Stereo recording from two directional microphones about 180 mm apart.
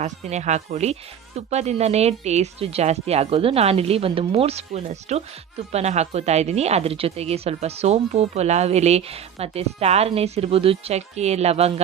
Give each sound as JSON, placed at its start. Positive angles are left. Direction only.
{"t": 0.0, "sound": "a woman's voice", "side_deg": -40}